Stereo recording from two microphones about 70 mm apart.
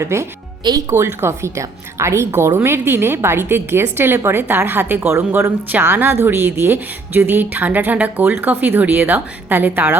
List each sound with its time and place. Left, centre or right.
0.0 s a woman's voice: right